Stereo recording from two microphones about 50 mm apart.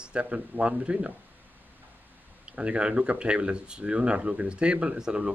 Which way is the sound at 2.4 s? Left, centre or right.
Right.